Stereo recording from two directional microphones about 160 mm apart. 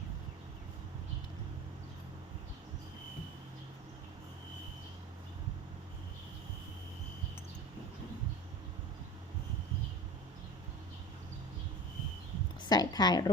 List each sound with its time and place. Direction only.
12.6 s a woman's voice: 25° left (ahead or behind)